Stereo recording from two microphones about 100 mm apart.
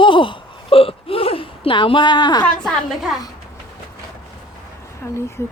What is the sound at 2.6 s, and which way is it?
Speech, centre (ahead or behind).